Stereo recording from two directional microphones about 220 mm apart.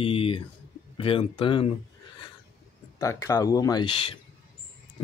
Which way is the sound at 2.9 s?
15° left (ahead or behind).